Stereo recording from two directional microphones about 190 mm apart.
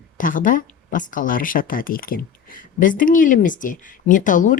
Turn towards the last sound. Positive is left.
turn(degrees=45)  # may be behind; listen again after turning